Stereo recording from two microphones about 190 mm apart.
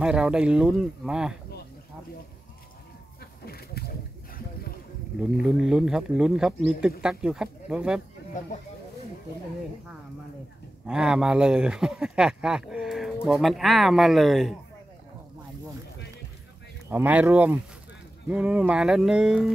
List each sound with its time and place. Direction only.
0.0 s speech: 5° right (ahead or behind)
3.4 s a sound: 55° left (ahead or behind)
5.2 s speech: 5° right (ahead or behind)
10.9 s speech: 5° right (ahead or behind)
16.9 s speech: 10° right (ahead or behind)